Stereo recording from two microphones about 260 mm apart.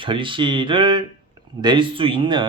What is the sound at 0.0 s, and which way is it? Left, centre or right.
Speech, centre.